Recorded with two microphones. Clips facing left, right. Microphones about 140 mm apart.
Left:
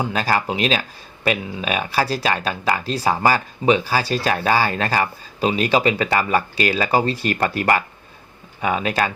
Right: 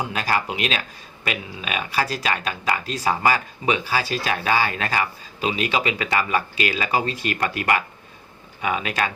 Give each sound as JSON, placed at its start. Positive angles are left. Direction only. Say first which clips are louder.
{"t": 0.0, "sound": "speech", "louder": "left 3 dB", "side_deg": 35}